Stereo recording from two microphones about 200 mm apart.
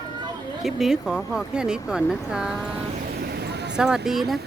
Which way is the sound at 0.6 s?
Centre (ahead or behind).